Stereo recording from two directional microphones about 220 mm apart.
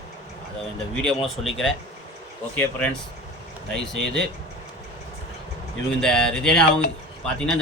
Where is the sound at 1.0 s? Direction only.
Centre (ahead or behind).